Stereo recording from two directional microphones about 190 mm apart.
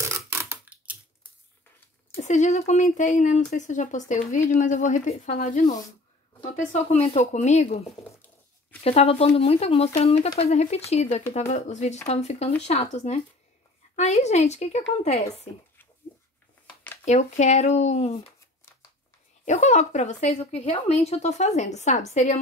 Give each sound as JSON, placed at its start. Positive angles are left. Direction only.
{"t": 0.1, "sound": "a sound", "side_deg": -15}
{"t": 2.1, "sound": "speech", "side_deg": 40}
{"t": 8.8, "sound": "speech", "side_deg": 30}
{"t": 17.0, "sound": "speech", "side_deg": 35}
{"t": 19.4, "sound": "speech", "side_deg": 40}